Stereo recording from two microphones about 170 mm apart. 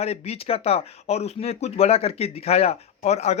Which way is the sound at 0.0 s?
35° left (ahead or behind).